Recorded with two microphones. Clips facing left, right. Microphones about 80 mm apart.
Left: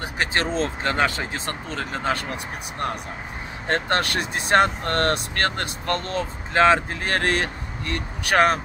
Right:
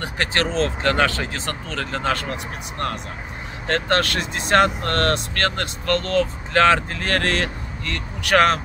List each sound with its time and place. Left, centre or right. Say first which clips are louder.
0.0 s speech: right 1 dB; centre
3.6 s speech: right 2 dB; centre